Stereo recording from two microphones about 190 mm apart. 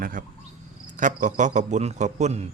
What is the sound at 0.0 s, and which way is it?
A man's voice, 45° right (ahead or behind).